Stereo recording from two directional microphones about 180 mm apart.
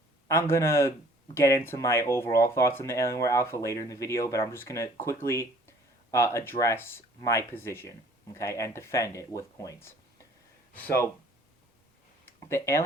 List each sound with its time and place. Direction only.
0.3 s speech: 15° left (ahead or behind)
12.2 s speech: 15° left (ahead or behind)